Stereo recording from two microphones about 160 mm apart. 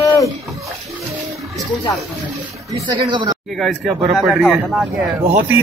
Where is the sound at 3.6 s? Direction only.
Centre (ahead or behind).